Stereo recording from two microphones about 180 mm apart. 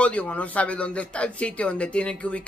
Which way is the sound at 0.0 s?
5° left (ahead or behind).